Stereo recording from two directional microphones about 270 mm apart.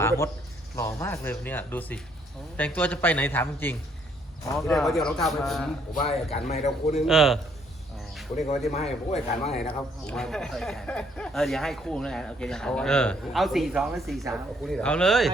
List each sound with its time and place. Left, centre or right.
0.0 s speech: centre
5.9 s speech: left
7.1 s speech: centre
8.7 s speech: left
10.1 s speech: centre